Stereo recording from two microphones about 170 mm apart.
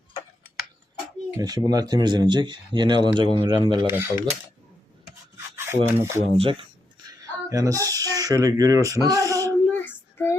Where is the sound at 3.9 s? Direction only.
15° right (ahead or behind).